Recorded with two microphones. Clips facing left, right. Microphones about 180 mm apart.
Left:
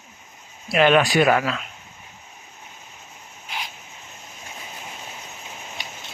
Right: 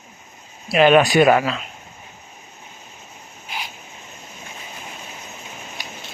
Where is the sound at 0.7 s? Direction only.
5° right (ahead or behind).